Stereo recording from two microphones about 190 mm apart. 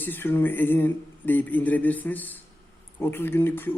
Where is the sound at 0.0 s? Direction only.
10° left (ahead or behind).